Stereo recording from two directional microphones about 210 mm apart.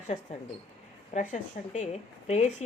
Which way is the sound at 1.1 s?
35° left (ahead or behind).